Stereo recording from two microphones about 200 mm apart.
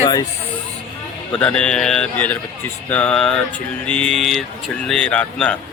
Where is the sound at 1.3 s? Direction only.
5° left (ahead or behind).